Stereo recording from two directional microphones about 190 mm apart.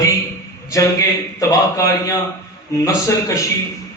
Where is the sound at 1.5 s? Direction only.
15° left (ahead or behind).